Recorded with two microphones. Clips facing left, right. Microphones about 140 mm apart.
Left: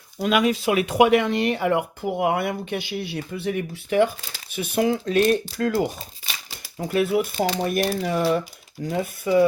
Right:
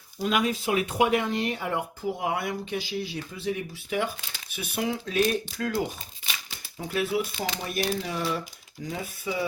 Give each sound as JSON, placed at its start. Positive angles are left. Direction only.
{"t": 0.2, "sound": "speech", "side_deg": 80}
{"t": 6.8, "sound": "speech", "side_deg": 55}
{"t": 7.3, "sound": "speech", "side_deg": 45}